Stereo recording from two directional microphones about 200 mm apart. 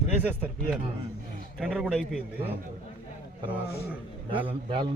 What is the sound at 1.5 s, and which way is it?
Speech, centre (ahead or behind).